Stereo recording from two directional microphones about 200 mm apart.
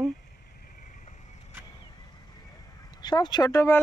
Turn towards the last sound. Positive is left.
turn(degrees=15)  # may be behind; listen again after turning